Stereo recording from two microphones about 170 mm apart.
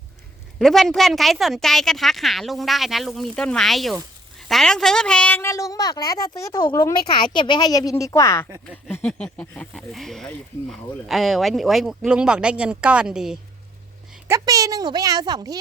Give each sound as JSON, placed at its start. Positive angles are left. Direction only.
{"t": 0.6, "sound": "a woman's voice", "side_deg": 0}
{"t": 14.3, "sound": "a woman's voice", "side_deg": -20}